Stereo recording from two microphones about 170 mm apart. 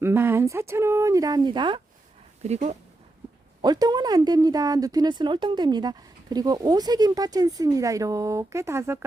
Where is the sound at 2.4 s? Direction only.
40° right (ahead or behind).